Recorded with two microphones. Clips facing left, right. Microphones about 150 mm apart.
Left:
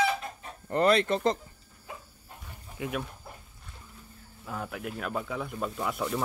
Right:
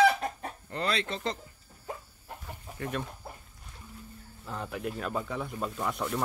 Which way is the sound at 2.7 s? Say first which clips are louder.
Left 1 dB; 5° left (ahead or behind).